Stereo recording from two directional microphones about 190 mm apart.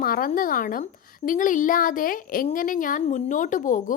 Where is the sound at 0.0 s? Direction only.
50° left (ahead or behind).